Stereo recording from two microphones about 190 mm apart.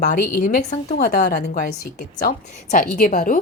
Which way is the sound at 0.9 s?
55° left (ahead or behind).